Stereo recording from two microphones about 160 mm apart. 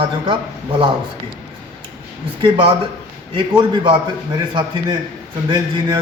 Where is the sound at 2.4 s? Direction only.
35° right (ahead or behind).